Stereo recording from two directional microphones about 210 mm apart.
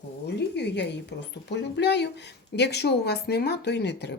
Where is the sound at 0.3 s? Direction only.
55° left (ahead or behind).